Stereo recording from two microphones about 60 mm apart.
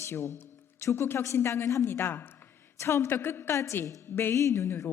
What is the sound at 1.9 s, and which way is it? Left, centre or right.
Speech, left.